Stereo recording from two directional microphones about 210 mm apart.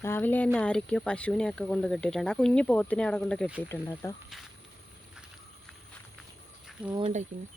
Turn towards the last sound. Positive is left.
turn(degrees=-30)  # may be behind; listen again after turning